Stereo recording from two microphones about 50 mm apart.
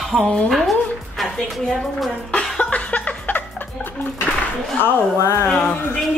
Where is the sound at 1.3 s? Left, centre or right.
Centre.